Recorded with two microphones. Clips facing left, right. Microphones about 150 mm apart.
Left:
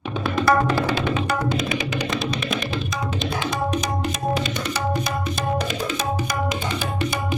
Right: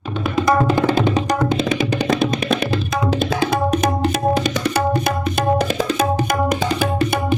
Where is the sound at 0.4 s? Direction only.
20° right (ahead or behind).